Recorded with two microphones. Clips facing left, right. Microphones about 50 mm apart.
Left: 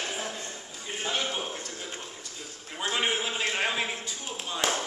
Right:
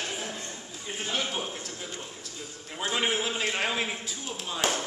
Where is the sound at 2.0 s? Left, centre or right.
Centre.